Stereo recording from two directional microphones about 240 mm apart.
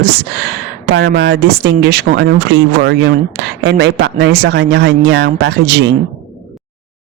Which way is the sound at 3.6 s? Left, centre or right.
Right.